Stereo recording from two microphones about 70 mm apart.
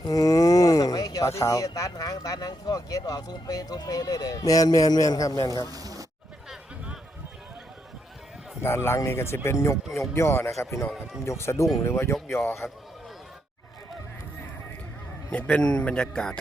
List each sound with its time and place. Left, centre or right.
0.0 s a sound: left
1.3 s speech: left
1.5 s speech: left
5.7 s a sound: right
8.6 s speech: left
12.6 s a man's voice: centre
15.3 s a man's voice: centre